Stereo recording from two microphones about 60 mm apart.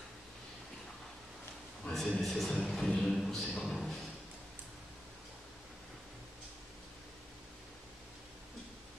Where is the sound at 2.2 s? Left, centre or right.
Centre.